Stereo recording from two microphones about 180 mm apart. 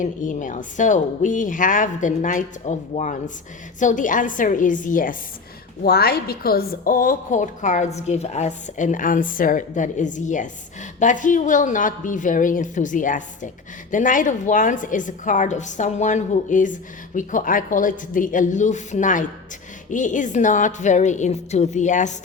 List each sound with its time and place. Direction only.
0.0 s a woman's voice: 45° left (ahead or behind)
5.8 s a woman's voice: 60° left (ahead or behind); by 22.1 s 40° left (ahead or behind)